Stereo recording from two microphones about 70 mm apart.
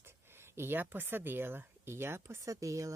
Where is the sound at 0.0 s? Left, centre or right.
Right.